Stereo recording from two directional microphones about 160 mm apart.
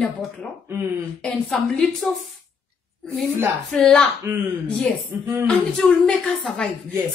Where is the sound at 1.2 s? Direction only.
Centre (ahead or behind).